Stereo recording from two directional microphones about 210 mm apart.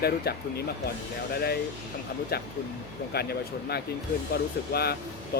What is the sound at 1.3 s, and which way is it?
Speech, 50° left (ahead or behind).